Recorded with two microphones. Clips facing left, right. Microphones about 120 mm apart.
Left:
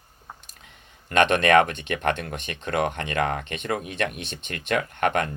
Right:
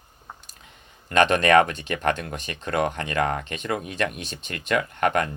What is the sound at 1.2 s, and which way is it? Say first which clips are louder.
Speech: right 1 dB; 40° right (ahead or behind).